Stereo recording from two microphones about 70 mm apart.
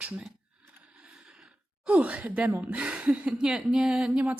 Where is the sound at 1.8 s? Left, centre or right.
Right.